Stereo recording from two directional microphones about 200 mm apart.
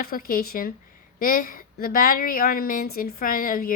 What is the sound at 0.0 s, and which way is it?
A woman's voice, 45° left (ahead or behind).